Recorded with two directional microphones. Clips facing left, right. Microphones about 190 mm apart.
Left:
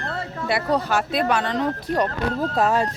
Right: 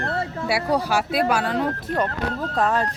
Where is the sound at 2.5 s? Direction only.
10° left (ahead or behind).